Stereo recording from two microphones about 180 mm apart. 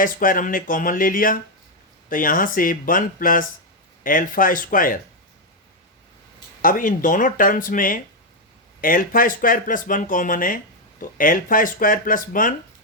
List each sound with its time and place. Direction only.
0.0 s speech: 50° left (ahead or behind)
6.6 s speech: 50° left (ahead or behind)